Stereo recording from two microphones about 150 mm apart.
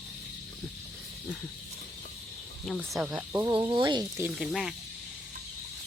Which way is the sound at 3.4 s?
30° right (ahead or behind).